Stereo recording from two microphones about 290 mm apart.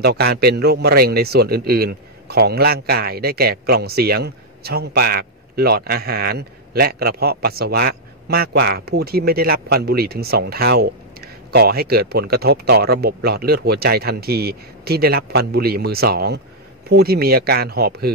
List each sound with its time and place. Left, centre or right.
0.0 s a man's voice: right